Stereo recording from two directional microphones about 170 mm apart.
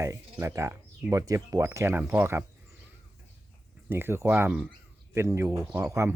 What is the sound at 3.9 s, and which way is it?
Speech, 15° right (ahead or behind).